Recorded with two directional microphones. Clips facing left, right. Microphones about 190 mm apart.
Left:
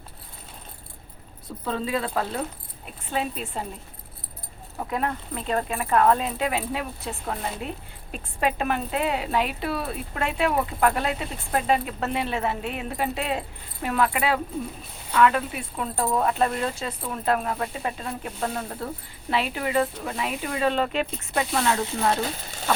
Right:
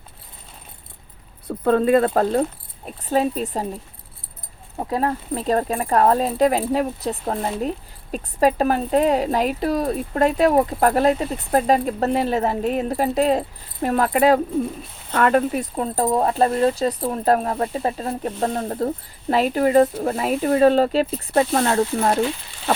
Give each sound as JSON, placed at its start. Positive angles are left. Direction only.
{"t": 1.5, "sound": "speech", "side_deg": -55}
{"t": 4.8, "sound": "speech", "side_deg": -35}